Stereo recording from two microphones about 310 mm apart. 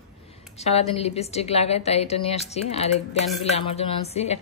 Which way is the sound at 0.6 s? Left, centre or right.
Centre.